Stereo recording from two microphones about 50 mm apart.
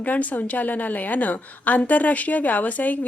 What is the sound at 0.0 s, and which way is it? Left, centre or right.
A woman's voice, left.